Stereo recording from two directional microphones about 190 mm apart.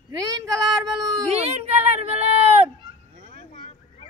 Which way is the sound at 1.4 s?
35° right (ahead or behind).